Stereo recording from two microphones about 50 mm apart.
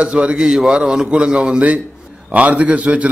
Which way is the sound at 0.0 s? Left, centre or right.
Right.